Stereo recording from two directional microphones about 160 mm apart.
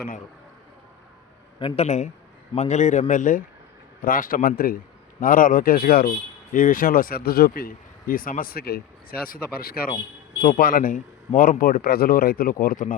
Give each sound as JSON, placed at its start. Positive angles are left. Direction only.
{"t": 1.5, "sound": "a man's voice", "side_deg": 35}